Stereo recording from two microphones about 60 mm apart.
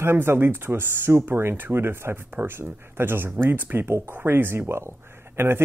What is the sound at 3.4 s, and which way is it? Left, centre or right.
Speech, right.